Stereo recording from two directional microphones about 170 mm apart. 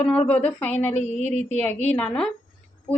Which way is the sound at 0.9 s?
40° left (ahead or behind).